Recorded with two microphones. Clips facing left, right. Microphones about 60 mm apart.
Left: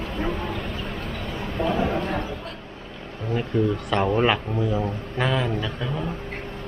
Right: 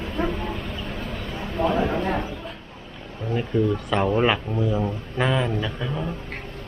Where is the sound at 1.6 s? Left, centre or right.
Centre.